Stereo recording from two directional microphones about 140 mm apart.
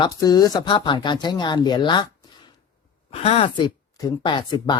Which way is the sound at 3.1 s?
45° left (ahead or behind).